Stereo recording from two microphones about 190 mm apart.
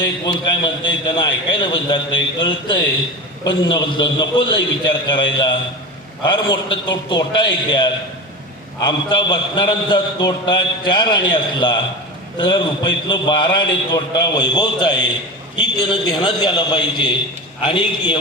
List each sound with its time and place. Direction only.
0.5 s a man's voice: 20° left (ahead or behind)
9.0 s a man's voice: 25° left (ahead or behind)